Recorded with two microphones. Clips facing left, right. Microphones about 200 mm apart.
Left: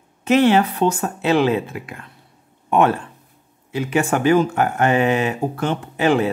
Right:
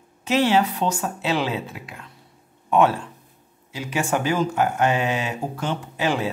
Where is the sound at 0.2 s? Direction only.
55° left (ahead or behind).